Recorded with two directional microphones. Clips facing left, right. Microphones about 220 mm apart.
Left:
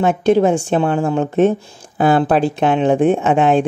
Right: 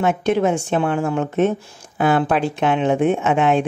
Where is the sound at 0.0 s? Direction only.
30° left (ahead or behind).